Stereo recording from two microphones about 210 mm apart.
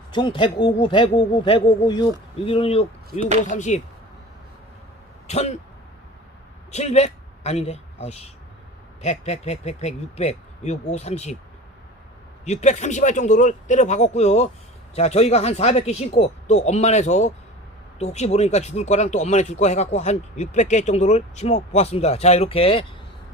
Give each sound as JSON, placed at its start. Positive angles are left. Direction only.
{"t": 0.1, "sound": "speech", "side_deg": 25}
{"t": 3.1, "sound": "speech", "side_deg": -35}
{"t": 3.5, "sound": "speech", "side_deg": 35}
{"t": 5.3, "sound": "speech", "side_deg": 30}
{"t": 6.7, "sound": "a man's voice", "side_deg": 30}
{"t": 12.5, "sound": "speech", "side_deg": 35}